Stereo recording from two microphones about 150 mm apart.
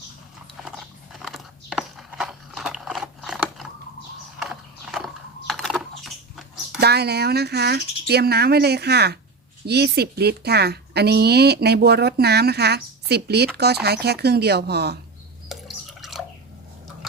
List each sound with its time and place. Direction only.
1.2 s a sound: centre (ahead or behind)
6.7 s a woman's voice: 90° right
15.4 s drip: centre (ahead or behind)